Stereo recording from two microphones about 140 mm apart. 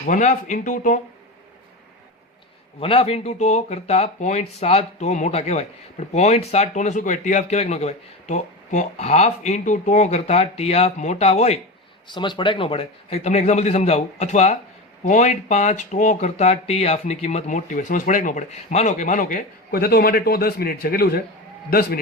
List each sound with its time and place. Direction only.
0.1 s speech: 60° left (ahead or behind)
2.8 s speech: 45° left (ahead or behind)
12.0 s a man's voice: 35° left (ahead or behind); by 21.9 s 90° left